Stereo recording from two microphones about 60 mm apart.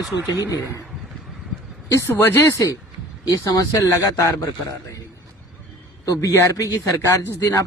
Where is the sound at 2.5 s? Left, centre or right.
Left.